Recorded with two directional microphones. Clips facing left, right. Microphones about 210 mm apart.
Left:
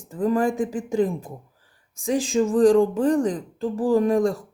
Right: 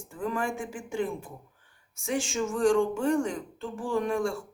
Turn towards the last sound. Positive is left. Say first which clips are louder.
# left 8 dB
turn(degrees=35)  # may be behind; listen again after turning